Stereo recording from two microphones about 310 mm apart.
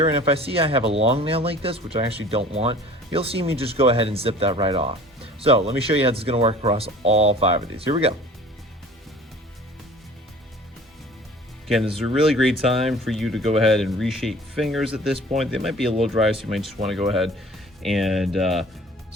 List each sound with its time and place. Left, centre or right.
0.0 s speech: centre
11.9 s speech: centre